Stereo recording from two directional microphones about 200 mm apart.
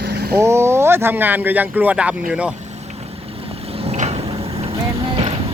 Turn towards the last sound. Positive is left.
turn(degrees=-30)  # may be behind; listen again after turning